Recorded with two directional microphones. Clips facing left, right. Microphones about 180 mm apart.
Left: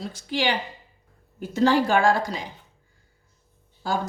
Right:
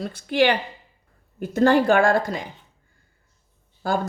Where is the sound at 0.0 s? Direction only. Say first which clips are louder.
Right 6 dB; 55° right (ahead or behind).